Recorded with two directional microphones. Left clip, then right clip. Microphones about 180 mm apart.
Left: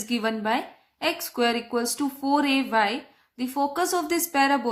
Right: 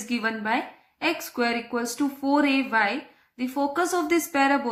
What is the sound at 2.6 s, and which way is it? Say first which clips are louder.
Speech: even; 35° left (ahead or behind).